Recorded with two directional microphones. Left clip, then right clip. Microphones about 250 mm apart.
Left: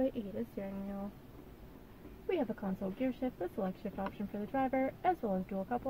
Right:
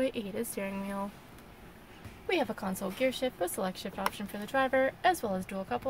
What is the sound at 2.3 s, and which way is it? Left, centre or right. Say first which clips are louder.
A woman's voice: right 5 dB; centre.